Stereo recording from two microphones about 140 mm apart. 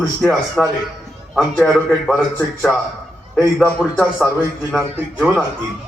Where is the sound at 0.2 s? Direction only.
Centre (ahead or behind).